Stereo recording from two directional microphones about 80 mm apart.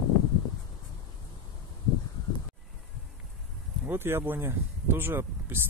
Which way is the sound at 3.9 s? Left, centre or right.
Right.